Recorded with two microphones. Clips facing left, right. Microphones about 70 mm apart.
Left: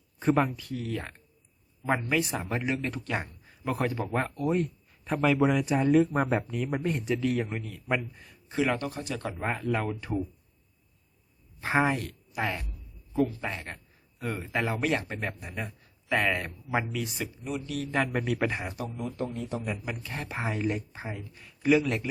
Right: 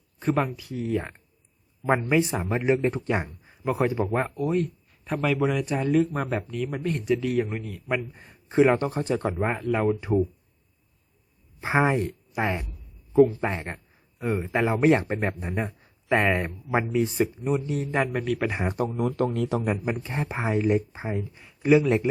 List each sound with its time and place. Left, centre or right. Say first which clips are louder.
0.2 s speech: even; centre
0.9 s speech: right 7 dB; right
4.1 s speech: right 3 dB; centre
6.5 s speech: right 1 dB; centre
6.8 s speech: right 5 dB; centre
8.0 s speech: right 3 dB; right
9.4 s speech: right 5 dB; centre
11.6 s speech: right 3 dB; right
18.1 s speech: right 2 dB; centre
18.7 s speech: right 9 dB; right
19.8 s speech: right 7 dB; right